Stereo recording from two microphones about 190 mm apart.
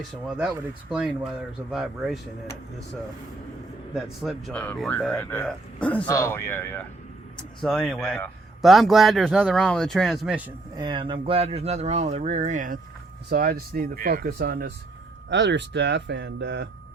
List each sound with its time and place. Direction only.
0.3 s a man's voice: 5° right (ahead or behind)
3.9 s a man's voice: centre (ahead or behind)
10.8 s speech: 25° right (ahead or behind); by 14.7 s 55° right (ahead or behind)
15.3 s speech: 65° right (ahead or behind)